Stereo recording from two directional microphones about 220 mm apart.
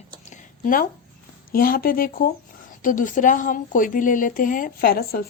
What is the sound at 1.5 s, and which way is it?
Speech, 40° left (ahead or behind).